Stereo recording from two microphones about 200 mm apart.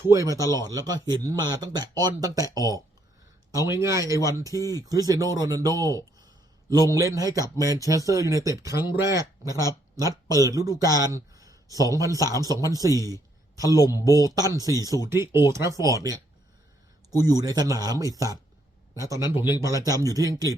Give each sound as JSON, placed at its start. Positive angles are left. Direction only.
{"t": 0.1, "sound": "speech", "side_deg": -15}
{"t": 3.7, "sound": "speech", "side_deg": -15}
{"t": 13.7, "sound": "speech", "side_deg": 15}
{"t": 14.3, "sound": "speech", "side_deg": -20}